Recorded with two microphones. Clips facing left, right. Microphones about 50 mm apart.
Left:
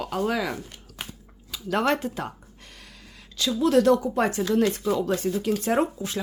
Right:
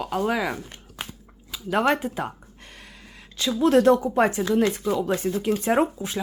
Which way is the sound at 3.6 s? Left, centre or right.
Right.